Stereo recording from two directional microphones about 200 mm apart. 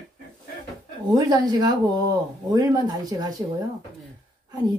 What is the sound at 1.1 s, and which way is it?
Speech, 20° right (ahead or behind).